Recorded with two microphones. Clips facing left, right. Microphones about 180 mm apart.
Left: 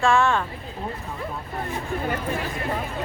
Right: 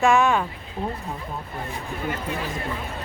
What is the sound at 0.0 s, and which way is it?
Speech, 20° right (ahead or behind).